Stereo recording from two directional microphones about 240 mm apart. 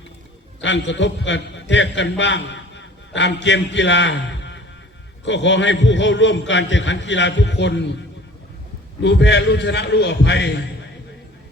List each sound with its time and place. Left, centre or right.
0.6 s a man's voice: left
9.0 s a man's voice: left